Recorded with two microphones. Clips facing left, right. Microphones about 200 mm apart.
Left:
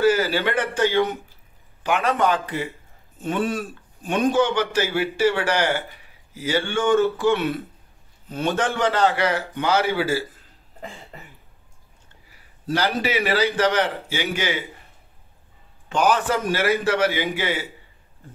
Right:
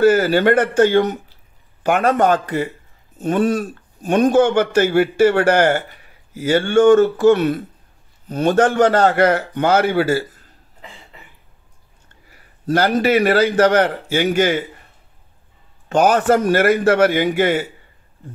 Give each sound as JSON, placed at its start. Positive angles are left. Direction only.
{"t": 0.0, "sound": "a man's voice", "side_deg": -50}
{"t": 12.3, "sound": "a man's voice", "side_deg": -50}
{"t": 15.9, "sound": "a man's voice", "side_deg": -50}